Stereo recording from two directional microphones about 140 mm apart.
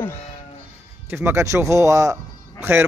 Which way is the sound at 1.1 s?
15° right (ahead or behind).